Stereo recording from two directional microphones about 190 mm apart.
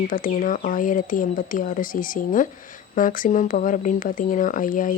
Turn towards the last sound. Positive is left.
turn(degrees=45)  # may be behind; listen again after turning